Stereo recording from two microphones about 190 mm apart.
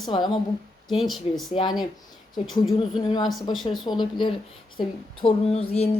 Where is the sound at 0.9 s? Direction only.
Centre (ahead or behind).